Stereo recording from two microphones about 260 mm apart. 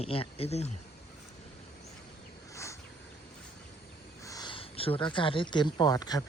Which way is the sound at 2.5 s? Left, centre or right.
Centre.